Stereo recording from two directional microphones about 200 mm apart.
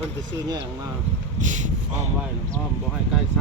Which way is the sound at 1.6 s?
35° right (ahead or behind).